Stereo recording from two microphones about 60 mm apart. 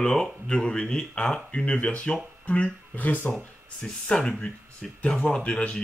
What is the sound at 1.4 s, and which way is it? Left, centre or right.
Speech, centre.